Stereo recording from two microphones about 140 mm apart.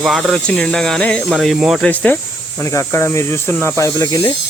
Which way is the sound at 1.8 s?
10° left (ahead or behind).